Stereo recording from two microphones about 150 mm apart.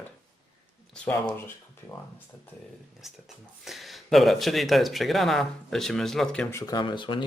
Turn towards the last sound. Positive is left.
turn(degrees=30)  # may be behind; listen again after turning